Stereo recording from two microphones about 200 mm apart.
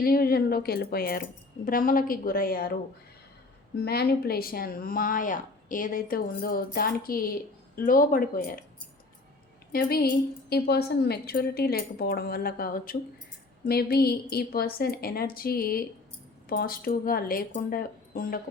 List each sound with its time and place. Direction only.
0.0 s speech: 50° left (ahead or behind)
3.8 s speech: 50° left (ahead or behind)
9.7 s speech: 50° left (ahead or behind)